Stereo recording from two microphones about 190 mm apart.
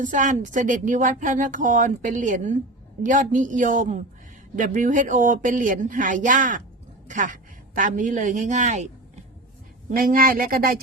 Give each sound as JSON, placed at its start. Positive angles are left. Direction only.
{"t": 0.0, "sound": "speech", "side_deg": -45}
{"t": 9.9, "sound": "speech", "side_deg": -50}